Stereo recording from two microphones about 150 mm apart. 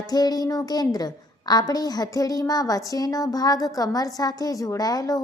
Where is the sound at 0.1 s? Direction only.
25° left (ahead or behind).